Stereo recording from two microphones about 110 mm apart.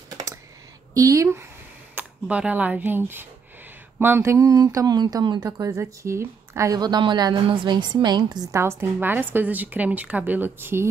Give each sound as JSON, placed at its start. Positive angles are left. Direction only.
{"t": 0.1, "sound": "typing", "side_deg": -30}
{"t": 0.9, "sound": "a woman's voice", "side_deg": -30}
{"t": 2.0, "sound": "a woman's voice", "side_deg": -10}
{"t": 5.6, "sound": "a woman's voice", "side_deg": -25}
{"t": 6.8, "sound": "a woman's voice", "side_deg": -40}
{"t": 8.5, "sound": "a woman's voice", "side_deg": -20}